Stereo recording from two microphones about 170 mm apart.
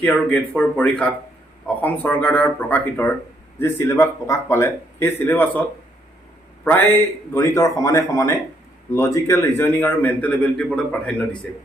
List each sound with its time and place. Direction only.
0.0 s a man's voice: 5° left (ahead or behind)
6.7 s a man's voice: 10° left (ahead or behind)